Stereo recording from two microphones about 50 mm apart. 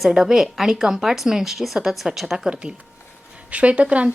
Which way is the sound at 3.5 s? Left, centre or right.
Right.